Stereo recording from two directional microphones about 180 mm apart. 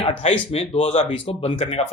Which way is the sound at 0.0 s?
30° left (ahead or behind).